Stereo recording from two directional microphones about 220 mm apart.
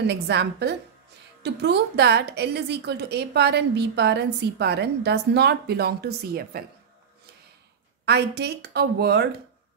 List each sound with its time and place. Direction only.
0.0 s a woman's voice: 50° right (ahead or behind)
8.0 s a woman's voice: 50° right (ahead or behind)